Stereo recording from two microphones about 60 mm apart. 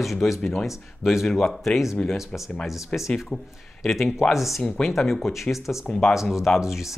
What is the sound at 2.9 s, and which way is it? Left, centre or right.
Speech, centre.